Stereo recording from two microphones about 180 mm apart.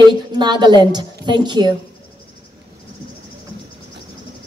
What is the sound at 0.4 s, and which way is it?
A woman's voice, 25° right (ahead or behind).